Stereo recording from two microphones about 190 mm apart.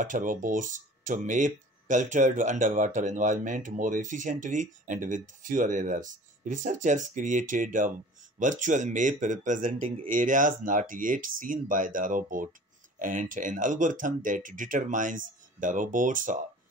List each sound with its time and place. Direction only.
0.0 s speech: 45° right (ahead or behind)